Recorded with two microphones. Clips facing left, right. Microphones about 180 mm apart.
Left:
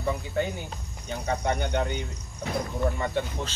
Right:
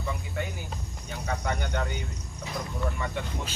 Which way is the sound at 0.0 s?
30° left (ahead or behind).